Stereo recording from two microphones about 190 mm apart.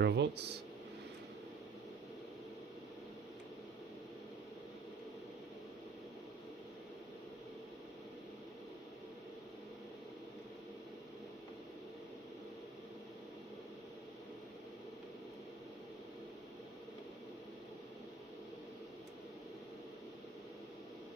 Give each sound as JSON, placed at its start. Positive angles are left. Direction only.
{"t": 0.0, "sound": "speech", "side_deg": -60}